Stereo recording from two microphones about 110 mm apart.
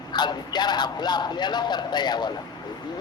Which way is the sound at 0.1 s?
40° left (ahead or behind).